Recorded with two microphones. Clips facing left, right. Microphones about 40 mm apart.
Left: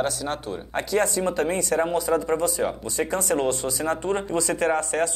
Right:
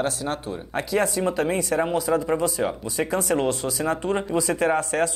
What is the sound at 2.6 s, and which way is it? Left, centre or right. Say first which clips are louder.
Speech: even; centre.